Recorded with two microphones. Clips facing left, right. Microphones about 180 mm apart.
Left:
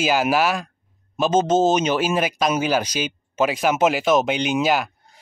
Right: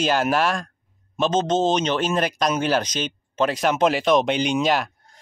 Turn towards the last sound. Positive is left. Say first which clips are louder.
# left 1 dB
turn(degrees=5)  # may be behind; listen again after turning